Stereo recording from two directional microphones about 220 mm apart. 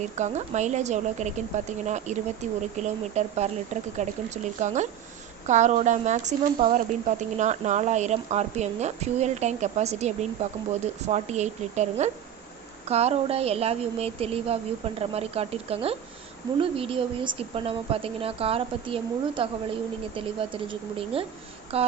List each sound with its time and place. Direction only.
0.0 s speech: 30° right (ahead or behind)